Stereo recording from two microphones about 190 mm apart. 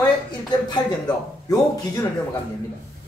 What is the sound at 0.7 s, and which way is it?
A man's voice, 20° left (ahead or behind).